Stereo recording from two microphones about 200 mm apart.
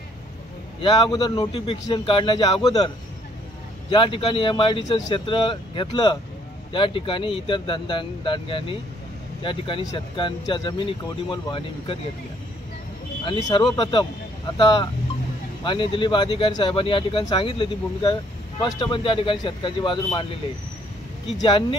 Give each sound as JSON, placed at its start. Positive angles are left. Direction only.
{"t": 0.7, "sound": "speech", "side_deg": 25}
{"t": 3.9, "sound": "speech", "side_deg": 25}
{"t": 13.2, "sound": "speech", "side_deg": 25}
{"t": 21.4, "sound": "speech", "side_deg": 25}